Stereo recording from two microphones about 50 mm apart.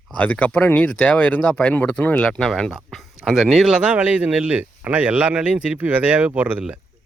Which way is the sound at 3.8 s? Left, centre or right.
Right.